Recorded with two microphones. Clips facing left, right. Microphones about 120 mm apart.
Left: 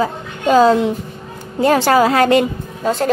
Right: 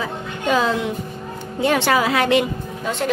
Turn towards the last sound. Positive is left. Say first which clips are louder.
# left 5 dB
turn(degrees=40)  # may be behind; listen again after turning